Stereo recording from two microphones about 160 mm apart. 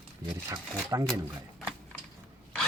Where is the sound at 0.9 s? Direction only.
20° right (ahead or behind).